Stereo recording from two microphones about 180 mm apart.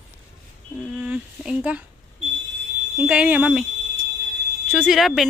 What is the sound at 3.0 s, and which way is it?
Speech, 5° right (ahead or behind).